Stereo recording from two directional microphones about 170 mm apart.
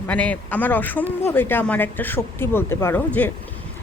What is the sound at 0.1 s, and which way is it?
Speech, 10° left (ahead or behind).